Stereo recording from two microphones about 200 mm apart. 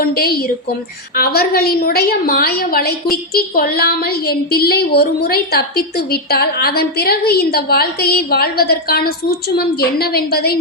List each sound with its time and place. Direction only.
0.0 s a woman's voice: 50° left (ahead or behind)